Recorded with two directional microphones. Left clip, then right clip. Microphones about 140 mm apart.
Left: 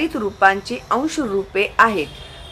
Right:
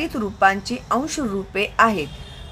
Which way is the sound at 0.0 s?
30° right (ahead or behind).